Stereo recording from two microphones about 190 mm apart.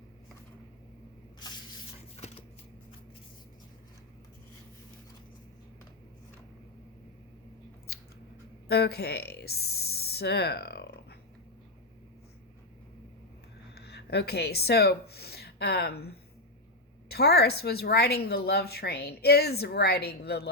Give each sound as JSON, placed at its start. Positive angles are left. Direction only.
{"t": 2.1, "sound": "shuffling cards", "side_deg": 35}
{"t": 7.9, "sound": "scissors", "side_deg": 55}
{"t": 8.6, "sound": "speech", "side_deg": 55}
{"t": 13.7, "sound": "a woman's voice", "side_deg": 60}